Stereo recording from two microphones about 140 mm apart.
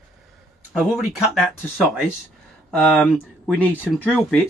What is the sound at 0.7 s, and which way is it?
Speech, centre (ahead or behind).